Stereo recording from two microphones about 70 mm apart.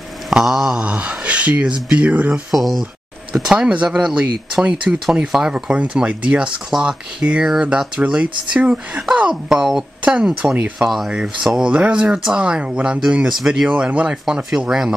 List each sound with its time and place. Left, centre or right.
0.3 s speech: centre
0.7 s speech: centre
2.5 s speech: centre
3.5 s speech: centre
10.8 s speech: centre